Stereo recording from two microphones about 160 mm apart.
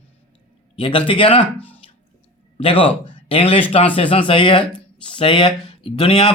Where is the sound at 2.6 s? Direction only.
35° left (ahead or behind).